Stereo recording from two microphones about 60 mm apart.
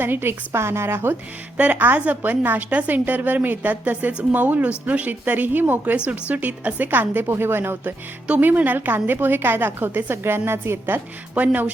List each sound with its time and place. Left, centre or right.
0.0 s a woman's voice: right
1.5 s a woman's voice: right
7.3 s a woman's voice: right
8.3 s a woman's voice: right
11.3 s a woman's voice: right